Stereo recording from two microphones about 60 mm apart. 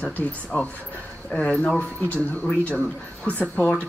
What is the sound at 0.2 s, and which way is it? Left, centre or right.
Speech, left.